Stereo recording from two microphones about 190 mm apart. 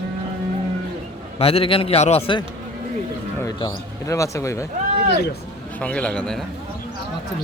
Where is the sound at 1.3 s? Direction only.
30° left (ahead or behind).